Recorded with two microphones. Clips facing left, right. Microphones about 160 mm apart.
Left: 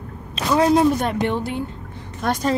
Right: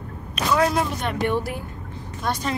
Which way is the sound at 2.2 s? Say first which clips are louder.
Left 5 dB; 50° left (ahead or behind).